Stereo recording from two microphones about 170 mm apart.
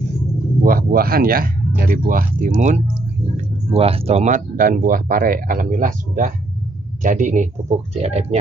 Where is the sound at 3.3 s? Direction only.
35° right (ahead or behind).